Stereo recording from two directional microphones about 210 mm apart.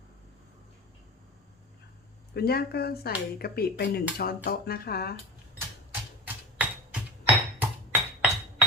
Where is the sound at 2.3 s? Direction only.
50° left (ahead or behind).